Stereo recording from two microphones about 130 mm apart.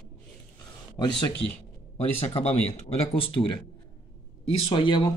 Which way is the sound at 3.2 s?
40° left (ahead or behind).